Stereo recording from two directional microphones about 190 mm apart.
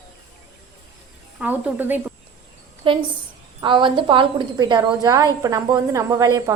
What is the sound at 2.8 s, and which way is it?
A woman's voice, 25° right (ahead or behind).